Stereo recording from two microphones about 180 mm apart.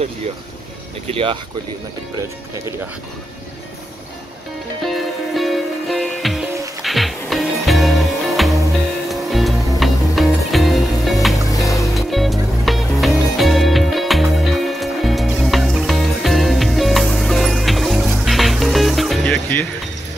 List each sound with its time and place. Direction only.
1.0 s speech: 30° right (ahead or behind)
4.8 s music: centre (ahead or behind)
11.4 s music: 20° left (ahead or behind)
11.9 s music: centre (ahead or behind)